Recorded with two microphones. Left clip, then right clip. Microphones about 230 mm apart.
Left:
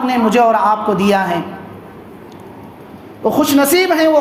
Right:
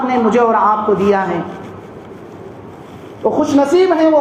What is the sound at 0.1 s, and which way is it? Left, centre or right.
Speech, left.